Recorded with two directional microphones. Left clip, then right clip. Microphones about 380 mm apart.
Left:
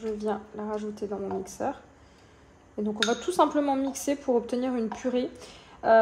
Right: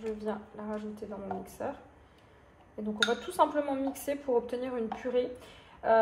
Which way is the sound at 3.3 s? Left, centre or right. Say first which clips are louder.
Left 4 dB; left.